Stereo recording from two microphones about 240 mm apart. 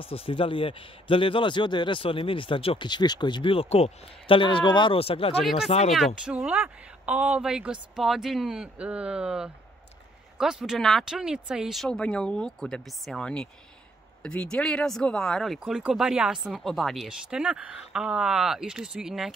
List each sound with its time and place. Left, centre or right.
0.0 s a man's voice: left
5.4 s speech: centre